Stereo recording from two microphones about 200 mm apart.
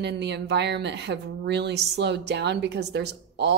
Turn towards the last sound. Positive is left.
turn(degrees=-60)  # may be behind; listen again after turning